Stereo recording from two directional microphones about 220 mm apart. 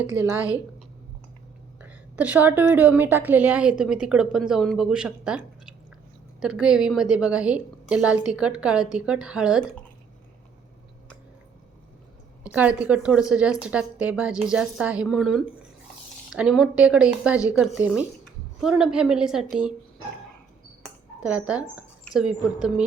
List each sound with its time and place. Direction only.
0.2 s a woman's voice: 10° right (ahead or behind)
1.8 s a woman's voice: 5° right (ahead or behind)
12.4 s a woman's voice: 5° right (ahead or behind)
20.8 s speech: 5° right (ahead or behind)